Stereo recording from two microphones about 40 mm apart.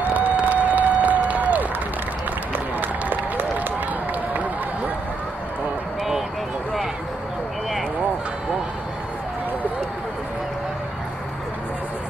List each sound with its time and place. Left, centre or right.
0.0 s a sound: right
0.4 s applause: right
2.5 s run: right